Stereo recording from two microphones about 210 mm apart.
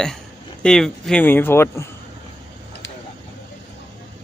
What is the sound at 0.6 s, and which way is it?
Speech, centre (ahead or behind).